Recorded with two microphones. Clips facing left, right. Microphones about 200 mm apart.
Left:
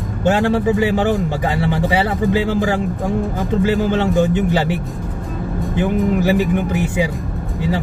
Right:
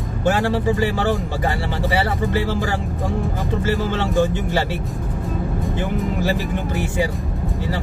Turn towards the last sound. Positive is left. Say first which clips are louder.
# left 4 dB
turn(degrees=20)  # may be behind; listen again after turning